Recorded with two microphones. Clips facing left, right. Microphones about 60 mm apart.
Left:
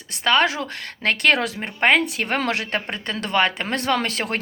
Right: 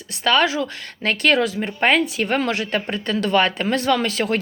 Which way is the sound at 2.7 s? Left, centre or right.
Left.